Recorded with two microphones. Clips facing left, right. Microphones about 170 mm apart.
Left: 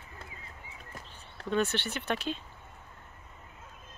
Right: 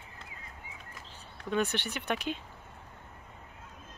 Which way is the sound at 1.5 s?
15° right (ahead or behind).